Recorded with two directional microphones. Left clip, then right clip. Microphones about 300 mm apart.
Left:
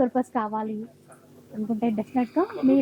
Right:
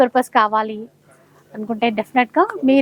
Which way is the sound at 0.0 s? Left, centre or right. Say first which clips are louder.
Right 10 dB; centre.